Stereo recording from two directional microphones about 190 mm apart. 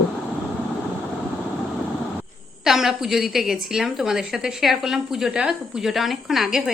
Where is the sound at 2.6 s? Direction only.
Centre (ahead or behind).